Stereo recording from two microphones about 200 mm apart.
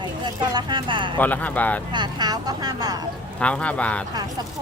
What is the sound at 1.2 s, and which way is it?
Speech, 10° left (ahead or behind).